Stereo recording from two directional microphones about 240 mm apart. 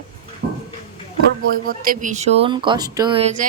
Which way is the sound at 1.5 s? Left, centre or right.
Right.